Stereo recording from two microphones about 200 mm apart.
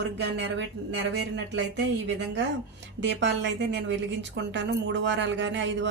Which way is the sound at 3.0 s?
65° right (ahead or behind).